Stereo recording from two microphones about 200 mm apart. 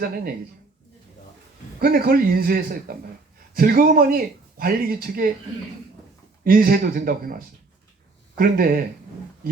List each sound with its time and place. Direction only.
1.8 s speech: 50° right (ahead or behind)
6.4 s speech: 45° right (ahead or behind)